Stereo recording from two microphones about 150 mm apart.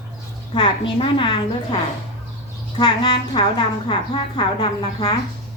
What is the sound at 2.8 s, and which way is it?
A woman's voice, 30° left (ahead or behind).